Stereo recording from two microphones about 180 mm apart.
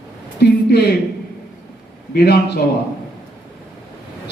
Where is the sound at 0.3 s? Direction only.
65° left (ahead or behind).